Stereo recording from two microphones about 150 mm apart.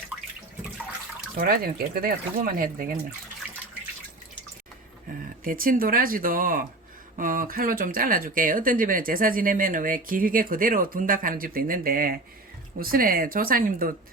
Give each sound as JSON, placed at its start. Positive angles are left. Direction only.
{"t": 1.4, "sound": "speech", "side_deg": -75}
{"t": 5.4, "sound": "speech", "side_deg": -70}